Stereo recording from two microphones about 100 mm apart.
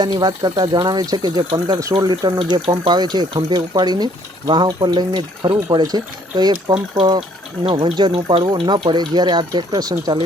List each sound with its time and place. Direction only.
0.0 s speech: 45° right (ahead or behind)
2.4 s speech: 60° right (ahead or behind); by 6.5 s 40° right (ahead or behind)
7.6 s speech: 65° right (ahead or behind); by 9.9 s 40° right (ahead or behind)